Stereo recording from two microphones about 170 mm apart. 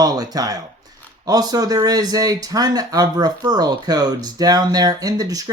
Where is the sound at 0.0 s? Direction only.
25° right (ahead or behind).